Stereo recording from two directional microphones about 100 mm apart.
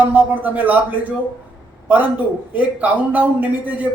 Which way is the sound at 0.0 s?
20° right (ahead or behind).